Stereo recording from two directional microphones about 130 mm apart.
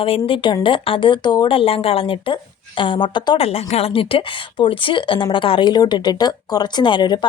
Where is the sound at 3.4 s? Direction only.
50° left (ahead or behind).